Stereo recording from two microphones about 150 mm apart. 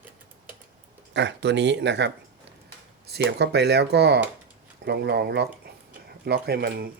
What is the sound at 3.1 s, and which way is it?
Speech, 90° right.